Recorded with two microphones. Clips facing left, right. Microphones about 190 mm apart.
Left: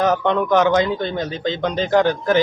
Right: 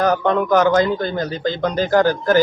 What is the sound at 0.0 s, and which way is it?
Speech, centre (ahead or behind).